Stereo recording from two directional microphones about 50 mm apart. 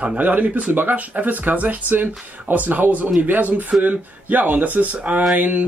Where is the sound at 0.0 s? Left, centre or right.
Right.